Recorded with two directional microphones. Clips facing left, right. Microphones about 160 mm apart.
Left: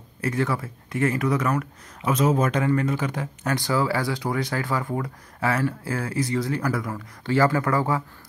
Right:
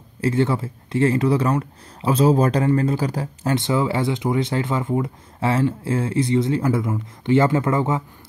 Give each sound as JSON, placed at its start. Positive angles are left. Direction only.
{"t": 0.2, "sound": "speech", "side_deg": -30}